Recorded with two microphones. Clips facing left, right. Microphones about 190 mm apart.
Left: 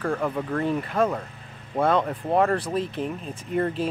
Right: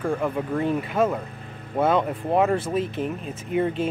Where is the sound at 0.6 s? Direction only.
Centre (ahead or behind).